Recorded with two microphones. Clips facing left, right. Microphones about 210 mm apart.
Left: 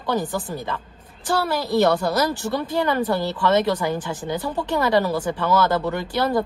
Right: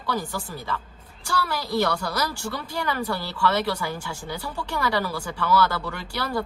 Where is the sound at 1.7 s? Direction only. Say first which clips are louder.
Left 7 dB; 25° left (ahead or behind).